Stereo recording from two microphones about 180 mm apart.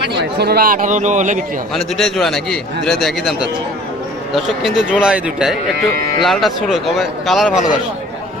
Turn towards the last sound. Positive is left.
turn(degrees=0)  # may be behind; listen again after turning